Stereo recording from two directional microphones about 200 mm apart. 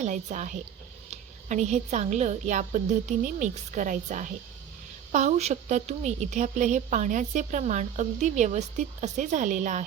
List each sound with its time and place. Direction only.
0.0 s a woman's voice: 35° right (ahead or behind)